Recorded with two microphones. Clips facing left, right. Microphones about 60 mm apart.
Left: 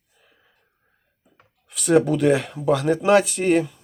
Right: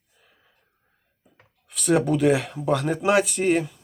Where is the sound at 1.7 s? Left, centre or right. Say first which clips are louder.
Left 3 dB; centre.